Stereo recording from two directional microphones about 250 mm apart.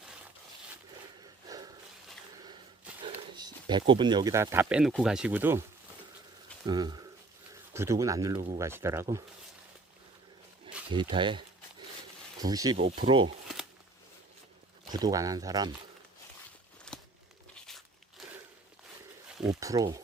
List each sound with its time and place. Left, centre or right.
1.5 s a sound: centre
3.3 s speech: centre
6.7 s speech: centre
10.8 s speech: centre
14.9 s speech: centre
16.9 s a sound: centre
19.5 s speech: centre